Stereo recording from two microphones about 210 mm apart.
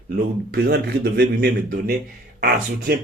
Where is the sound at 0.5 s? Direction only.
50° right (ahead or behind).